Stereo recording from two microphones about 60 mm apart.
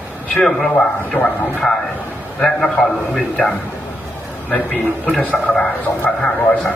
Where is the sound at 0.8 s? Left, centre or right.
Centre.